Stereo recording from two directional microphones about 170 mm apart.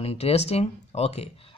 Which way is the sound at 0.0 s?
35° left (ahead or behind).